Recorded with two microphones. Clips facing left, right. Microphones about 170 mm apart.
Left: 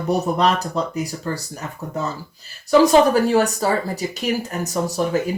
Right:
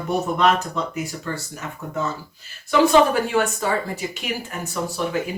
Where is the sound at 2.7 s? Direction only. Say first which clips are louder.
Left 3 dB; 40° left (ahead or behind).